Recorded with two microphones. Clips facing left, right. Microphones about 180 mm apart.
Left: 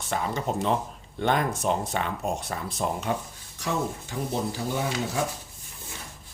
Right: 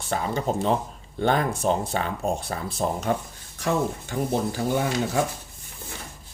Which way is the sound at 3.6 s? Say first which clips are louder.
Right 4 dB; 55° right (ahead or behind).